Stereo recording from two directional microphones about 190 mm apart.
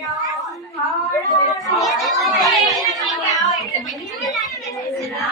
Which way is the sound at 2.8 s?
20° left (ahead or behind).